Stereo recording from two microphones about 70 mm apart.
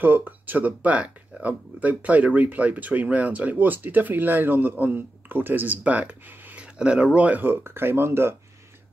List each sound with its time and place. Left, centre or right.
0.0 s speech: right